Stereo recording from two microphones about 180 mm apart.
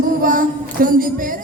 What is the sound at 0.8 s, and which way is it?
Speech, 50° right (ahead or behind).